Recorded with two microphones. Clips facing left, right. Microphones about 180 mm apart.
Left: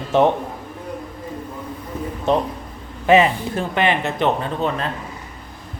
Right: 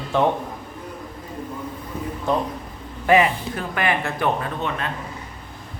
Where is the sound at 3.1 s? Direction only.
25° left (ahead or behind).